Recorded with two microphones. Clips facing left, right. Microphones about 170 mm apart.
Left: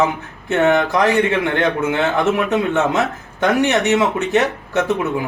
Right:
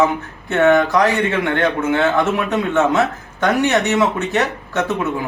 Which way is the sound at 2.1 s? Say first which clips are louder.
Left 1 dB; 20° left (ahead or behind).